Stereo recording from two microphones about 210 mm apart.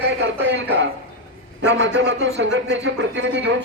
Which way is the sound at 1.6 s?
60° right (ahead or behind).